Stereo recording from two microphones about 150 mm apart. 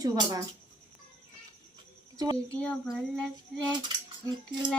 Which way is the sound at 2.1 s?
25° right (ahead or behind).